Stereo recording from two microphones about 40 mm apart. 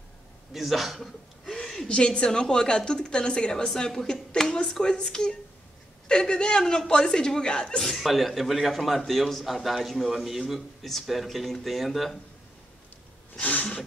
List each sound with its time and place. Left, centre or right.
0.5 s a man's voice: centre
1.9 s a woman's voice: left
7.8 s a man's voice: centre
13.4 s a sound: left